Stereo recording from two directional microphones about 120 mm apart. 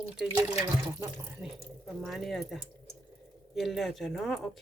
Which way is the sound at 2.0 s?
Centre (ahead or behind).